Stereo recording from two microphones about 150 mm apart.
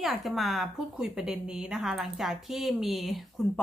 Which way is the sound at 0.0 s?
Centre (ahead or behind).